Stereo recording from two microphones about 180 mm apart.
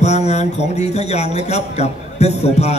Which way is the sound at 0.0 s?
40° left (ahead or behind).